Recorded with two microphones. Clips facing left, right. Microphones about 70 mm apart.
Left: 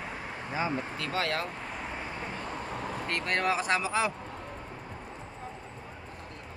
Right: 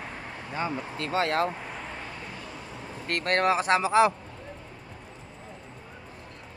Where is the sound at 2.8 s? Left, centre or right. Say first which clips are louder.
Left 5 dB; left.